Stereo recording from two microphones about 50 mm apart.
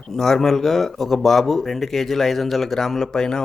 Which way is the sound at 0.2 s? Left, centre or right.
Centre.